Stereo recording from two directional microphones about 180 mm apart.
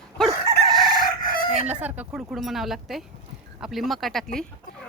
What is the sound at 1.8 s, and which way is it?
A woman's voice, 10° right (ahead or behind).